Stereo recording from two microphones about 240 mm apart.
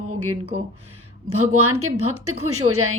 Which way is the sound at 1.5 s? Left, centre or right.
Right.